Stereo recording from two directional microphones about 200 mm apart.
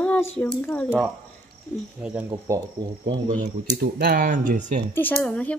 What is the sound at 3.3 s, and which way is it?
Speech, 40° right (ahead or behind).